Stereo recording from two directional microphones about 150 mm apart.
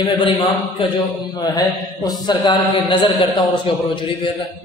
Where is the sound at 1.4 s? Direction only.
25° left (ahead or behind).